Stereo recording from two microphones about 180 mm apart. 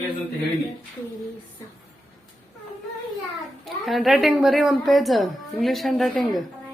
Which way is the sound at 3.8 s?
Centre (ahead or behind).